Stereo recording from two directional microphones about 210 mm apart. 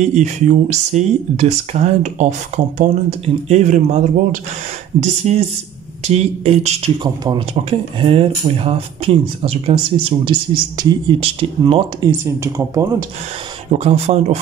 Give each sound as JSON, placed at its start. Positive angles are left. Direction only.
{"t": 0.0, "sound": "speech", "side_deg": -35}
{"t": 13.7, "sound": "speech", "side_deg": -30}